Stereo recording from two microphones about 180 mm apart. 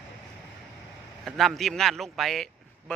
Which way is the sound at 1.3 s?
Centre (ahead or behind).